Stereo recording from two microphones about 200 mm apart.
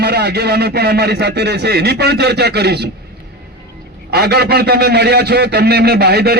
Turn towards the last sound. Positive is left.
turn(degrees=-55)  # may be behind; listen again after turning